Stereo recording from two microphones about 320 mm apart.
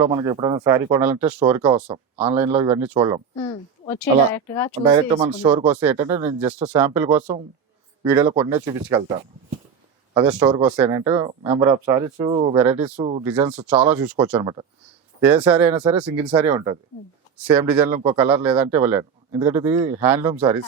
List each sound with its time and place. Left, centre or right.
0.0 s speech: centre
3.3 s a woman's voice: centre
4.7 s speech: centre
5.6 s speech: centre